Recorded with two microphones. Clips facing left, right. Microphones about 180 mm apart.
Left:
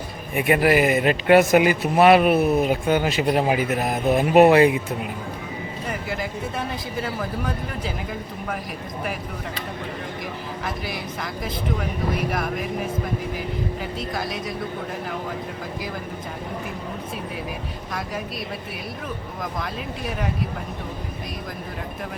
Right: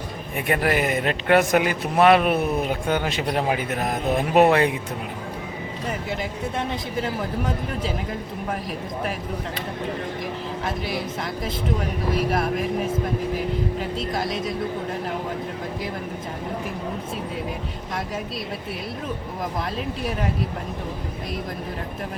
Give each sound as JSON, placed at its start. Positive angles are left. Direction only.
{"t": 0.3, "sound": "speech", "side_deg": 10}
{"t": 7.0, "sound": "speech", "side_deg": -20}
{"t": 14.0, "sound": "speech", "side_deg": -25}